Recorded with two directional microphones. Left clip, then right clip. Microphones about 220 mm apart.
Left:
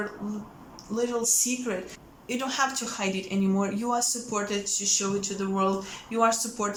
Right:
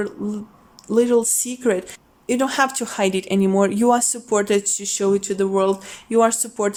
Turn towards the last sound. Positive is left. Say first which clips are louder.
# right 5 dB
turn(degrees=-35)  # may be behind; listen again after turning